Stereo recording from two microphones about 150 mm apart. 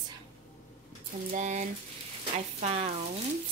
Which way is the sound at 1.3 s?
50° right (ahead or behind).